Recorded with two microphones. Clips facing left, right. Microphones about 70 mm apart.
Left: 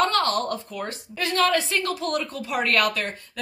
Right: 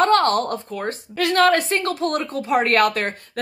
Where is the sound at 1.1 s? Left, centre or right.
Right.